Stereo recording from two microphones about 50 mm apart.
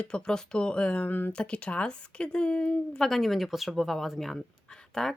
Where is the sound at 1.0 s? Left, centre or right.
Left.